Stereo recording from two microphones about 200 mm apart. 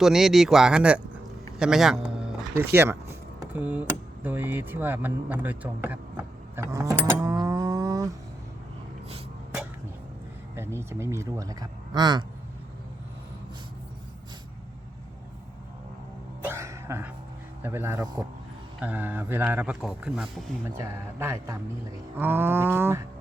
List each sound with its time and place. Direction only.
0.0 s speech: centre (ahead or behind)
6.6 s livestock: 15° right (ahead or behind)
10.5 s speech: 10° right (ahead or behind)
16.4 s cough: 15° right (ahead or behind)
17.6 s speech: 10° right (ahead or behind)
18.8 s speech: 10° right (ahead or behind)
21.2 s speech: 15° right (ahead or behind)